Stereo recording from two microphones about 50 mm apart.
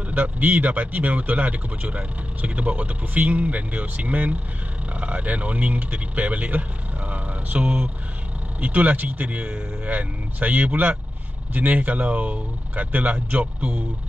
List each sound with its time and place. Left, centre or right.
0.1 s speech: right